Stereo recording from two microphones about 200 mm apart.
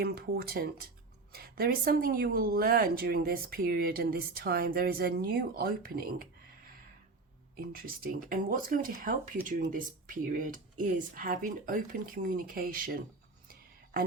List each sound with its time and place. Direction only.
0.0 s speech: 50° right (ahead or behind)
7.5 s speech: 45° right (ahead or behind)